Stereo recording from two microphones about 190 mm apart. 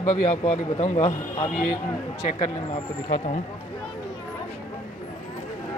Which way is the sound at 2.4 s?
35° left (ahead or behind).